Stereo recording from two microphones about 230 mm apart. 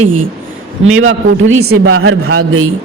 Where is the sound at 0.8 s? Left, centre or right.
Right.